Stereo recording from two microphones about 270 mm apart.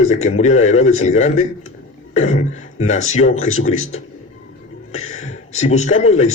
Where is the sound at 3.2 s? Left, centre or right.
Left.